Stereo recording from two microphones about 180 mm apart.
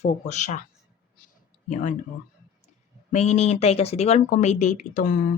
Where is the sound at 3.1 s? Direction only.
40° left (ahead or behind).